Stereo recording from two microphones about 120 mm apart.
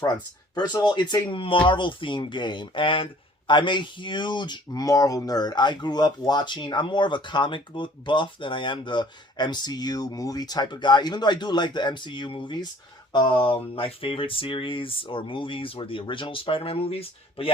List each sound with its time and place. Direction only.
0.5 s speech: 35° left (ahead or behind)